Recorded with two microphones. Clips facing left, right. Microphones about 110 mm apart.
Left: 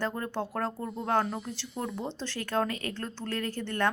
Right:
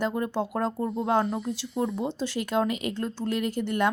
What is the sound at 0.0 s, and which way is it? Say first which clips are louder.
A woman's voice: right 5 dB; 15° right (ahead or behind).